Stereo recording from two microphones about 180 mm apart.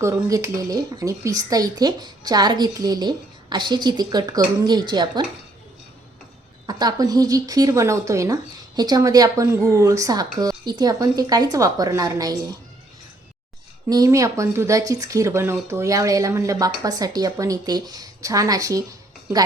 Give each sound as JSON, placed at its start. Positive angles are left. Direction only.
{"t": 0.0, "sound": "speech", "side_deg": -15}
{"t": 6.7, "sound": "speech", "side_deg": -20}
{"t": 13.9, "sound": "speech", "side_deg": -20}